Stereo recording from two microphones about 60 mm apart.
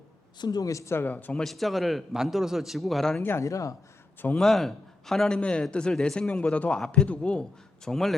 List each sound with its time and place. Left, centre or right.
0.6 s speech: left
0.9 s a man's voice: left
1.4 s a man's voice: centre
3.4 s speech: left
4.4 s a man's voice: centre
5.4 s a man's voice: centre
7.9 s a man's voice: centre